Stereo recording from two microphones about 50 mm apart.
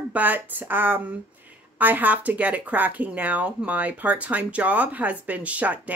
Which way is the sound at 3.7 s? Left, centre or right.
Right.